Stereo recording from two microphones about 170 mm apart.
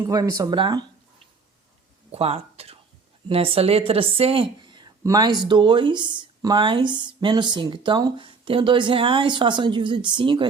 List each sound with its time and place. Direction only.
0.0 s speech: 20° right (ahead or behind)
2.1 s speech: 35° right (ahead or behind)